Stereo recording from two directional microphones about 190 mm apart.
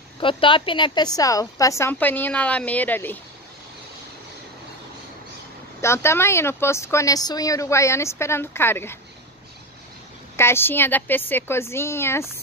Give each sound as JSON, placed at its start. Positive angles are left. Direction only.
{"t": 0.2, "sound": "speech", "side_deg": 25}
{"t": 5.8, "sound": "speech", "side_deg": 15}
{"t": 10.3, "sound": "speech", "side_deg": 15}